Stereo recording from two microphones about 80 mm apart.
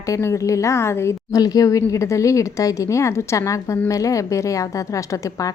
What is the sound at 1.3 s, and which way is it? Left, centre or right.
A woman's voice, left.